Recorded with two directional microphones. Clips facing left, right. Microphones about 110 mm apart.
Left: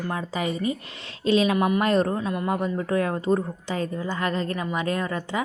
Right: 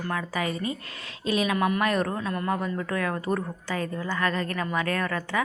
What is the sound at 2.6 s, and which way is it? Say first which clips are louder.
Speech: left 4 dB; 25° left (ahead or behind).